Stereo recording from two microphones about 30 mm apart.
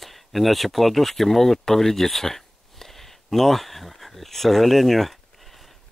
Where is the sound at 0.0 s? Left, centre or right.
Centre.